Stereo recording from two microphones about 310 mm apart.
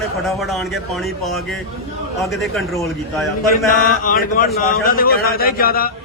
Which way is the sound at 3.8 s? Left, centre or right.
Left.